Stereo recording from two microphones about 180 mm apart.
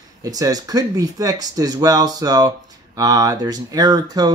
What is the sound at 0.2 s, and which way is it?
Speech, 20° right (ahead or behind).